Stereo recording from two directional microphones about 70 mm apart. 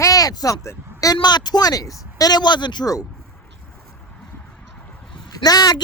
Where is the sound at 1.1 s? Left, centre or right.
Left.